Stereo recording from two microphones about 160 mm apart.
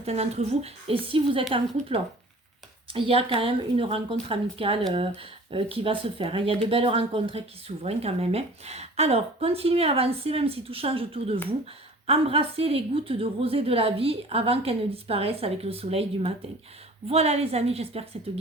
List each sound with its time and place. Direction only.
0.0 s a woman's voice: 40° right (ahead or behind)